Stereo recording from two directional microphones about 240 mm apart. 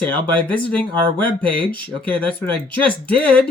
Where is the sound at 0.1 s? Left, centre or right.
Centre.